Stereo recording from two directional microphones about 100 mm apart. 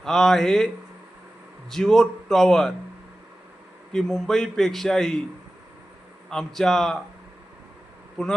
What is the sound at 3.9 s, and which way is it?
Speech, 5° left (ahead or behind).